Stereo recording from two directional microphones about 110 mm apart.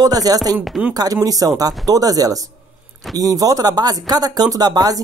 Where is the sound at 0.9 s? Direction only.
35° right (ahead or behind).